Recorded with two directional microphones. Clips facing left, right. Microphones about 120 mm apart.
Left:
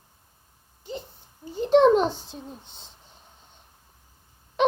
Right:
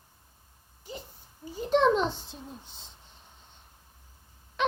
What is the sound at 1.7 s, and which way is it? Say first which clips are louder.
Speech: left 6 dB; 35° left (ahead or behind).